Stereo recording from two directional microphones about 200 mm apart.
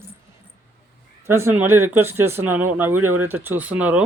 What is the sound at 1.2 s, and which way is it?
Speech, 10° right (ahead or behind).